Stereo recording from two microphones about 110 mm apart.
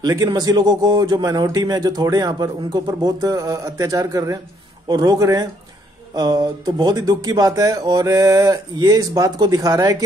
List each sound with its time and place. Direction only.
0.0 s a man's voice: 35° right (ahead or behind)